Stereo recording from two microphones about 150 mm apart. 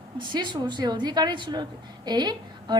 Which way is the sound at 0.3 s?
30° right (ahead or behind).